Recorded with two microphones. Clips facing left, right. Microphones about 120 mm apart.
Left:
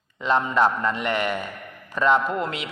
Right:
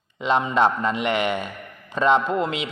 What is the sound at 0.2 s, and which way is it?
A man's voice, 15° right (ahead or behind).